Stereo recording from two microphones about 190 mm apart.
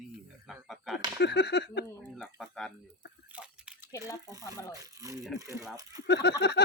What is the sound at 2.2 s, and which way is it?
Speech, centre (ahead or behind).